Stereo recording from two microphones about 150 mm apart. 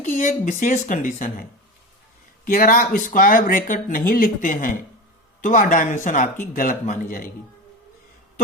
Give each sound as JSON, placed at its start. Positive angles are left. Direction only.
{"t": 0.0, "sound": "speech", "side_deg": 55}